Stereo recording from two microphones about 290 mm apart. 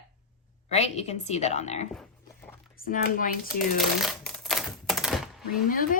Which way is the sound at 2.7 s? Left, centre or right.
Left.